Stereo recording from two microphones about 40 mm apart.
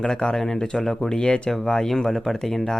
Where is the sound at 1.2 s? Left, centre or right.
Left.